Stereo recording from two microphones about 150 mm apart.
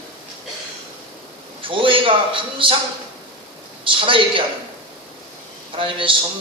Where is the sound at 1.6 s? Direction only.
35° right (ahead or behind).